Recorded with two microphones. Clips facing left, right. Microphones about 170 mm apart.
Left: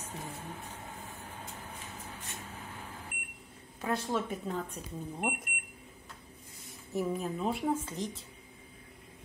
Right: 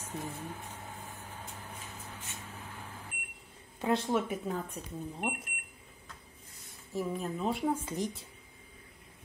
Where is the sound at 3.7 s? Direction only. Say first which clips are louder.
Right 4 dB; 25° right (ahead or behind).